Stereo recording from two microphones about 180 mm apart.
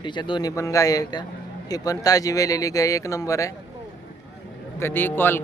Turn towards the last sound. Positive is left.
turn(degrees=10)  # may be behind; listen again after turning